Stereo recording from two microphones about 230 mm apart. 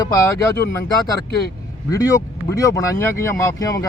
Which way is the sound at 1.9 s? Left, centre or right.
Centre.